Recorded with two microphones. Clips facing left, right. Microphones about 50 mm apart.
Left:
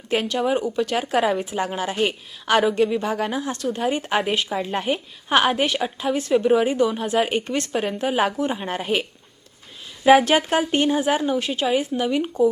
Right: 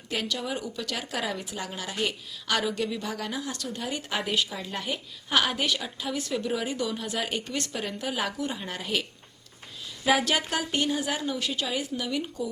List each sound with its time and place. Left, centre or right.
0.1 s speech: left